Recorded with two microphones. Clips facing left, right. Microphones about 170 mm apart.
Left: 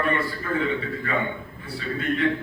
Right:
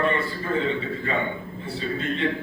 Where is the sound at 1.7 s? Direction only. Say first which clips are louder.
Left 1 dB; 25° right (ahead or behind).